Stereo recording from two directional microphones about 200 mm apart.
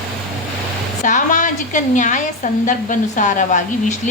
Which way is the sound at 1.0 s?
40° left (ahead or behind).